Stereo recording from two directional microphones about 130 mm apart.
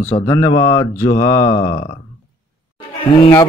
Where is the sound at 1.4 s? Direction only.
70° left (ahead or behind).